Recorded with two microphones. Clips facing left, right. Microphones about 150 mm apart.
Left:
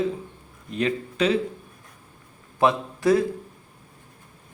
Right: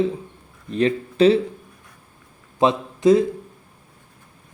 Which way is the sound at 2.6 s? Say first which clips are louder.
Right 2 dB; 20° right (ahead or behind).